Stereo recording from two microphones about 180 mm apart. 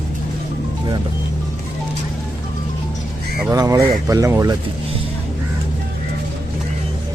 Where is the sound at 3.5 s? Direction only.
20° right (ahead or behind).